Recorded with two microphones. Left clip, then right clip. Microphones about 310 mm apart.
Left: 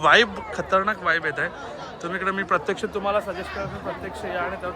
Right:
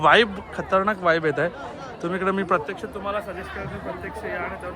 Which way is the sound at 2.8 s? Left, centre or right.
Left.